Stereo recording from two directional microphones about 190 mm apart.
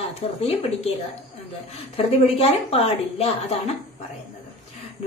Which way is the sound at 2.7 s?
30° left (ahead or behind).